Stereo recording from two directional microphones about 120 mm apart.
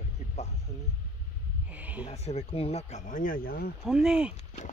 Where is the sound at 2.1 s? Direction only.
60° left (ahead or behind); by 3.2 s 80° left.